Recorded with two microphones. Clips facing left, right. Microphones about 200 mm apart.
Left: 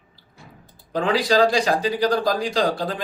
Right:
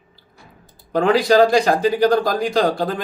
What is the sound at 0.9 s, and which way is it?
Speech, 50° right (ahead or behind).